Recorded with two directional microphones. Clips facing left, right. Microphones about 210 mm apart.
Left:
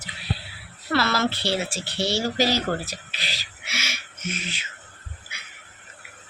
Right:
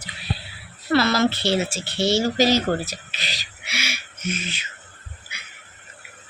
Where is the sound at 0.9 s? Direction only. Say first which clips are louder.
Right 4 dB; 15° right (ahead or behind).